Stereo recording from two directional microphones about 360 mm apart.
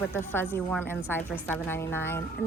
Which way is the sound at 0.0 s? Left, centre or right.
Centre.